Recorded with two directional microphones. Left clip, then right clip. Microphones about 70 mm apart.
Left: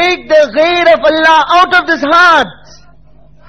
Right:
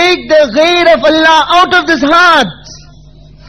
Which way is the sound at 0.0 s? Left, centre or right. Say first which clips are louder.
Right 1 dB; right.